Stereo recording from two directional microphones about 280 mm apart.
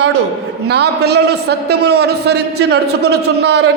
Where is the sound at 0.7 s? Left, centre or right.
Right.